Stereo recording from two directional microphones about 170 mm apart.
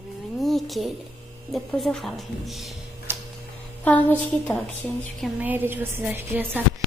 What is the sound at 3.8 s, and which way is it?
A woman's voice, 10° left (ahead or behind).